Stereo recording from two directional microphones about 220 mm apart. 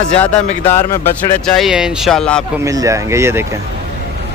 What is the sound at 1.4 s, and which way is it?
Speech, centre (ahead or behind).